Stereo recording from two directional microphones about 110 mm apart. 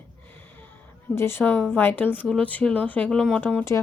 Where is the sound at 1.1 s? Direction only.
20° left (ahead or behind).